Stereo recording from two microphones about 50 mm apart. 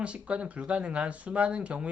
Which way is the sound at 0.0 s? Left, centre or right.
Right.